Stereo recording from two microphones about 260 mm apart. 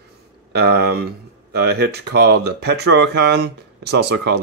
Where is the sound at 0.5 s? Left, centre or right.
Right.